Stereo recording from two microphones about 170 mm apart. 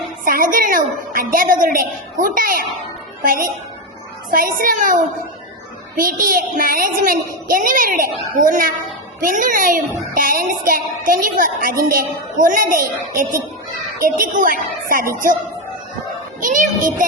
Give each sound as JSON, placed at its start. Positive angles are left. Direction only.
{"t": 0.3, "sound": "a child's voice", "side_deg": -55}
{"t": 16.4, "sound": "a woman's voice", "side_deg": -50}